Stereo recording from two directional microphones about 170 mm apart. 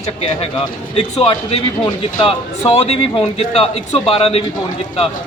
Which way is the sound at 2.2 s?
35° left (ahead or behind).